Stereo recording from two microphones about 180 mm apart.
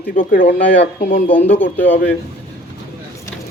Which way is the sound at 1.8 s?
10° left (ahead or behind).